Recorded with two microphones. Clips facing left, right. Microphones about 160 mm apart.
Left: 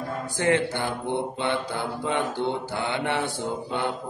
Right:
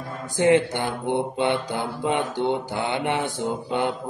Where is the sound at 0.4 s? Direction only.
15° right (ahead or behind).